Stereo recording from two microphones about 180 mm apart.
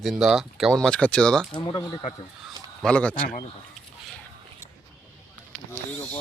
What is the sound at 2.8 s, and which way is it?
Speech, 5° left (ahead or behind).